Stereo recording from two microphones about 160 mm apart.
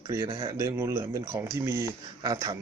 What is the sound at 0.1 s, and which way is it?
A man's voice, 20° right (ahead or behind).